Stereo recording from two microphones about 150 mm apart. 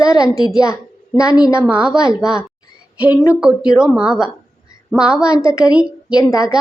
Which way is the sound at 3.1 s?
20° left (ahead or behind).